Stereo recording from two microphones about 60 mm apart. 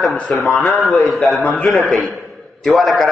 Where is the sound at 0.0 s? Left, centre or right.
Centre.